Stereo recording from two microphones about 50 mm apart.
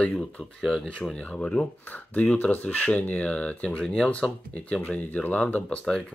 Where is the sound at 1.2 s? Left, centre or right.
Left.